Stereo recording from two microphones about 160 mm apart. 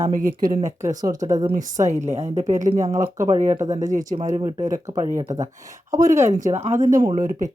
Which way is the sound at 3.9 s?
50° right (ahead or behind).